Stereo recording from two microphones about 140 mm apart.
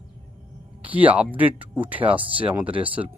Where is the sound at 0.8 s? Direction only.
10° right (ahead or behind).